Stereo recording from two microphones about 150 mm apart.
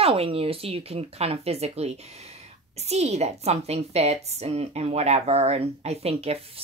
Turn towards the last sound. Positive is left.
turn(degrees=-40)  # may be behind; listen again after turning